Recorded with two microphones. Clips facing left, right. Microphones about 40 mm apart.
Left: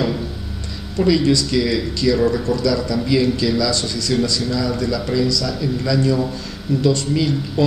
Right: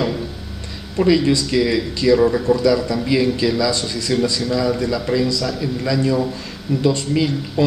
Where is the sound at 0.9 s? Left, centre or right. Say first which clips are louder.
Right 1 dB; centre.